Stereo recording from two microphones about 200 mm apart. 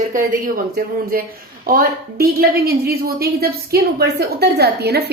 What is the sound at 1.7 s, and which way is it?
A woman's voice, 45° right (ahead or behind).